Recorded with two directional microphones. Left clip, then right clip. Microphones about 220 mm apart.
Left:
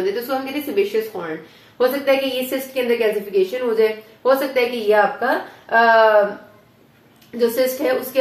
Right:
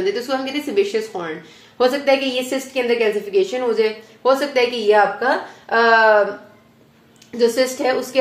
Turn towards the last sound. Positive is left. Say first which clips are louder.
# right 1 dB
turn(degrees=-35)  # may be behind; listen again after turning